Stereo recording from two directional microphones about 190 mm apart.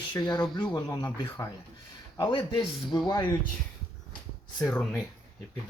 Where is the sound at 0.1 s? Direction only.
25° left (ahead or behind).